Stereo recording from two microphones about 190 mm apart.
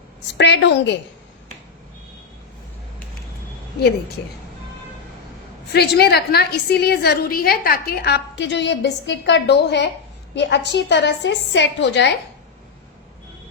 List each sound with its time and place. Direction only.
0.3 s a woman's voice: 70° left (ahead or behind)
5.7 s a woman's voice: 55° left (ahead or behind)